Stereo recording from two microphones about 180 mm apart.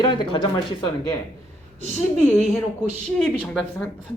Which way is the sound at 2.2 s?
10° left (ahead or behind).